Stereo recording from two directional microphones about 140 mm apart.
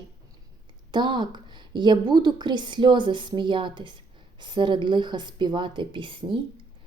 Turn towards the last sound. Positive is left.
turn(degrees=-35)  # may be behind; listen again after turning